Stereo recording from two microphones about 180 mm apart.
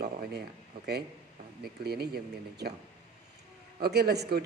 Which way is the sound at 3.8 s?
65° right (ahead or behind).